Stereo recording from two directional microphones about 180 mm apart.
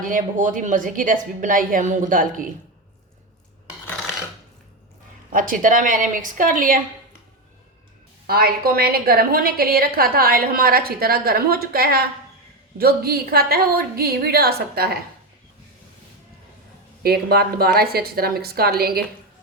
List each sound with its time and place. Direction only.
0.0 s a woman's voice: 45° right (ahead or behind)
5.3 s a woman's voice: 50° right (ahead or behind)
8.3 s a woman's voice: 55° right (ahead or behind)
17.0 s a woman's voice: 60° right (ahead or behind)